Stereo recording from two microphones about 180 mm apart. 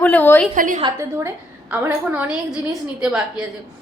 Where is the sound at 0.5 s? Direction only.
45° right (ahead or behind).